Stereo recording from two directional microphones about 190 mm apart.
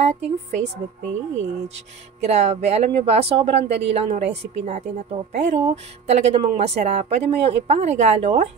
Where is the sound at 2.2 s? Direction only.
35° right (ahead or behind).